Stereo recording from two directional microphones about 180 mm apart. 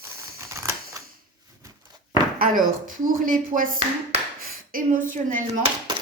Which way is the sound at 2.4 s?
50° right (ahead or behind).